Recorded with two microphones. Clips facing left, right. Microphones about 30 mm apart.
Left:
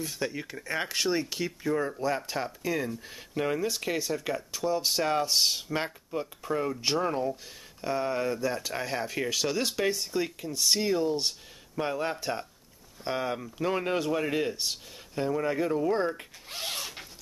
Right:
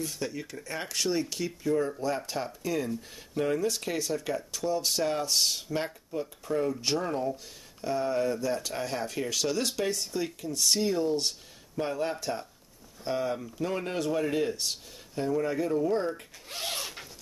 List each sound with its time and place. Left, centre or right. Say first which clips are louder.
0.0 s speech: left 1 dB; centre
16.4 s zipper: right 1 dB; centre